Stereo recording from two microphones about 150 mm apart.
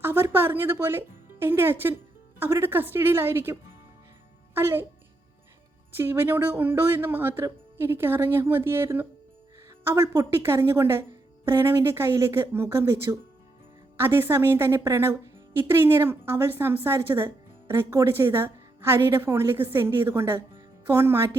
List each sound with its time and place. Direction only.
0.0 s a woman's voice: 15° right (ahead or behind)
6.0 s a woman's voice: 15° right (ahead or behind)